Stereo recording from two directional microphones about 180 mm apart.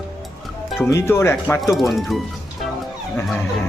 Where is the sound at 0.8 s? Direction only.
15° left (ahead or behind).